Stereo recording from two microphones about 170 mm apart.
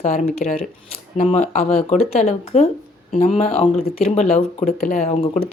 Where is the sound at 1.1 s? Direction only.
45° left (ahead or behind).